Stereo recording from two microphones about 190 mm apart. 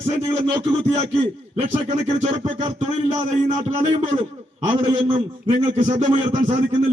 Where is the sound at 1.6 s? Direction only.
35° right (ahead or behind).